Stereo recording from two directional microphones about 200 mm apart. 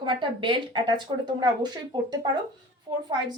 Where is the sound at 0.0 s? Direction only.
25° right (ahead or behind).